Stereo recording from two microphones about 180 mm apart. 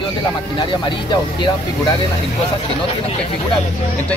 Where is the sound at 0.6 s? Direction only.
25° left (ahead or behind).